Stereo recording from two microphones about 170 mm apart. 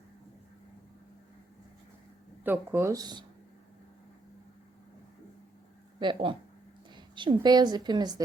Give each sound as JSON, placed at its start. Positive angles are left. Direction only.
{"t": 2.4, "sound": "speech", "side_deg": -10}
{"t": 6.0, "sound": "a woman's voice", "side_deg": -30}